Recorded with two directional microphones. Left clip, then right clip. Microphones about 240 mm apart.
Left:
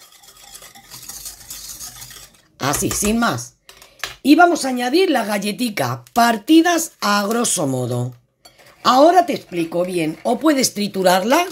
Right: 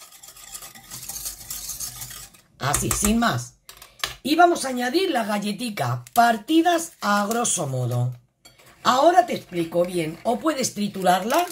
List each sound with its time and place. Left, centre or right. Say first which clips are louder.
2.6 s speech: left 4 dB; left